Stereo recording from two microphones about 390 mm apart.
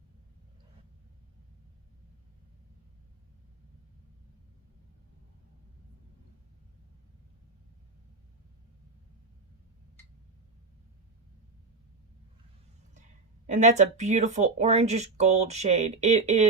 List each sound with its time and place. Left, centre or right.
13.5 s speech: centre